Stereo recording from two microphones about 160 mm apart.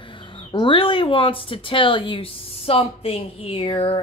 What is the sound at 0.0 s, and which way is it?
Speech, 30° left (ahead or behind).